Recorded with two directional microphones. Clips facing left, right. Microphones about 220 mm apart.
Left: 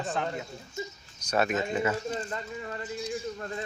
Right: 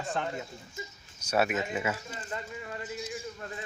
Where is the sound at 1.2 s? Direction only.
10° right (ahead or behind).